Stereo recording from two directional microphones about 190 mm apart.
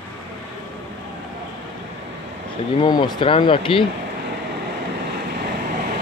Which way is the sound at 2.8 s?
25° left (ahead or behind).